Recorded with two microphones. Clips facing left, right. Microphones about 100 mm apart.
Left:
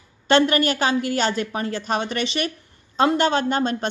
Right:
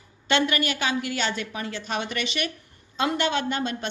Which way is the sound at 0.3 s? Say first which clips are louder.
Left 6 dB; 40° left (ahead or behind).